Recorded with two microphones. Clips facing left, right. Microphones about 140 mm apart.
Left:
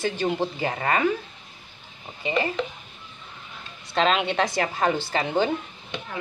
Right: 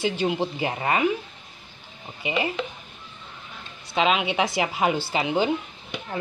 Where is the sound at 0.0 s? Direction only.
15° right (ahead or behind).